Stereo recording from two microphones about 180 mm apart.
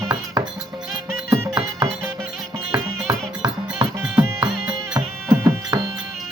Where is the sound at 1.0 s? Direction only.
15° right (ahead or behind).